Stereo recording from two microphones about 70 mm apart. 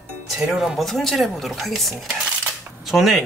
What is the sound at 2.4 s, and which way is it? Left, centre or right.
Camera, centre.